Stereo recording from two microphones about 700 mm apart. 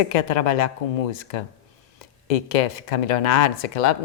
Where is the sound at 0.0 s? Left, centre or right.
Left.